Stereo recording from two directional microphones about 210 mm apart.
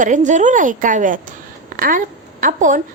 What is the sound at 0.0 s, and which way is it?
A woman's voice, 35° right (ahead or behind).